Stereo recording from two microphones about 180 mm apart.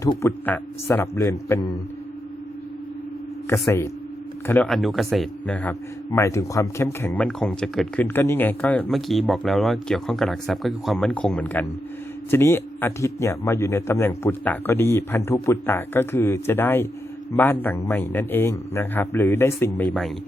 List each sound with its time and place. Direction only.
0.0 s speech: 15° left (ahead or behind)
3.5 s speech: 15° left (ahead or behind)
7.3 s speech: 5° left (ahead or behind)